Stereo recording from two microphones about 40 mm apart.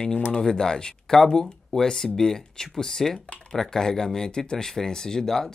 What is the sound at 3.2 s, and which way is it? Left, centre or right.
Speech, left.